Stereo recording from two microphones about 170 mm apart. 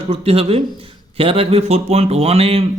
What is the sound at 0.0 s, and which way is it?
A man's voice, 35° right (ahead or behind).